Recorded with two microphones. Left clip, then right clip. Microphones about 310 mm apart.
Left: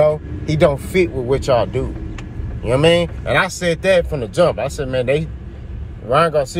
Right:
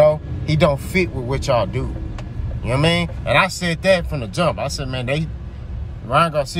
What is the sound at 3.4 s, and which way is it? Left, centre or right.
Speech, centre.